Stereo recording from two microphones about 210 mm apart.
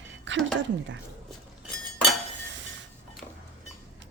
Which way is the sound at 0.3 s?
60° right (ahead or behind).